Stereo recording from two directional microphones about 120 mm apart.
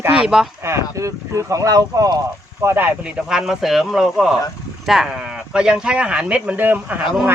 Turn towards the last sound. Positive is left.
turn(degrees=-15)  # may be behind; listen again after turning